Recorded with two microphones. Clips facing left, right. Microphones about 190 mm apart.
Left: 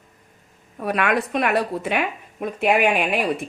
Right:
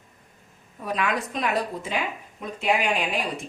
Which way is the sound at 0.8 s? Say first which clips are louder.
Left 5 dB; 65° left (ahead or behind).